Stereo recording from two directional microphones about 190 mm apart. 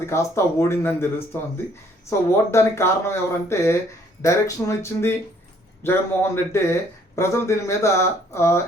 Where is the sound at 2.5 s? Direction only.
15° left (ahead or behind).